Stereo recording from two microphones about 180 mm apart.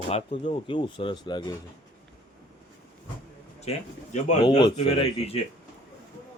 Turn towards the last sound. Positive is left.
turn(degrees=35)  # may be behind; listen again after turning